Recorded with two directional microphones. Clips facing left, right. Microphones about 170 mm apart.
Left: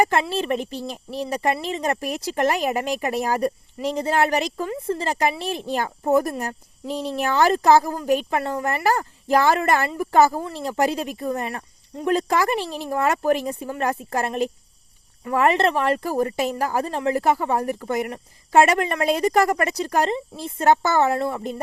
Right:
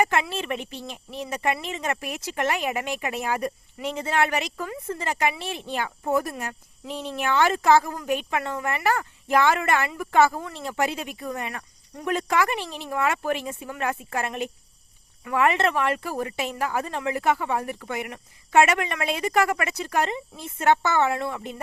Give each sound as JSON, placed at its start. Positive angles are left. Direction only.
{"t": 0.0, "sound": "speech", "side_deg": 35}